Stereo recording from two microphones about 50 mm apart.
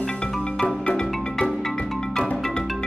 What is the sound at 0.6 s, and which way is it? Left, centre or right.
Marimba, centre.